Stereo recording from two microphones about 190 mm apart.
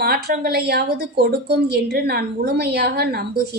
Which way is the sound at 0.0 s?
55° right (ahead or behind).